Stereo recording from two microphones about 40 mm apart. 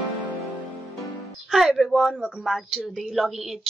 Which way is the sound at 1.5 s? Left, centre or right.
Centre.